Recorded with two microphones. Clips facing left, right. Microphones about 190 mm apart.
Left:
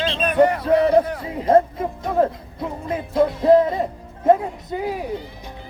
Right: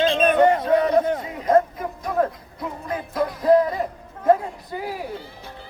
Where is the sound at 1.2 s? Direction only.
30° left (ahead or behind).